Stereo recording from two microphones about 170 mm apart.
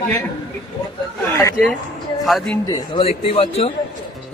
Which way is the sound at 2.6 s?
30° left (ahead or behind).